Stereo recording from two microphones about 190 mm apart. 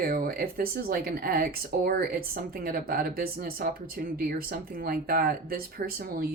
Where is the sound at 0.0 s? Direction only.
50° right (ahead or behind).